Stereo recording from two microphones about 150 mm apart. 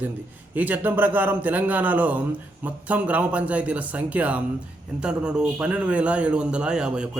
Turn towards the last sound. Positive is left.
turn(degrees=-5)  # may be behind; listen again after turning